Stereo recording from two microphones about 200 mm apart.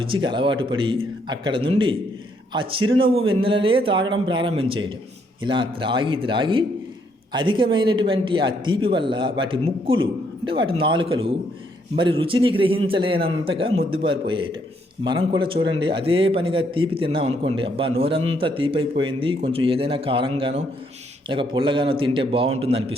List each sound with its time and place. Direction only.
0.0 s speech: 25° right (ahead or behind)